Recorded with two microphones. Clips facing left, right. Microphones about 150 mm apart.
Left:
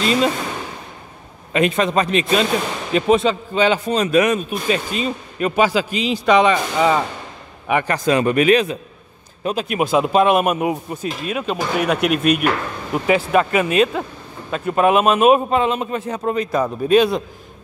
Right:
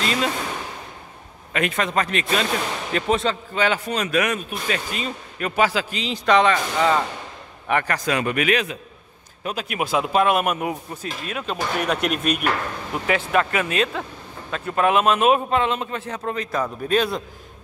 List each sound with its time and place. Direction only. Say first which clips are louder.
0.0 s speech: left 6 dB; 20° left (ahead or behind)
1.5 s a man's voice: left 6 dB; 25° left (ahead or behind)
7.9 s speech: left 6 dB; 30° left (ahead or behind); by 12.4 s 5° left (ahead or behind)
13.3 s speech: left 5 dB; 15° left (ahead or behind)